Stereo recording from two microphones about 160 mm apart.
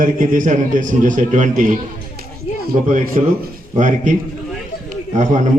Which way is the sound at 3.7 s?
50° right (ahead or behind).